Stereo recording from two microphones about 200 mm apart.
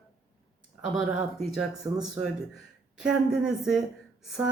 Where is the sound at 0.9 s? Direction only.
Centre (ahead or behind).